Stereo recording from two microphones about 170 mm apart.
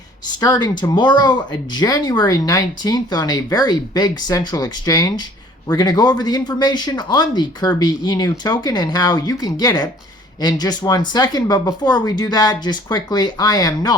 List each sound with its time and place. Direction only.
0.3 s speech: 25° left (ahead or behind)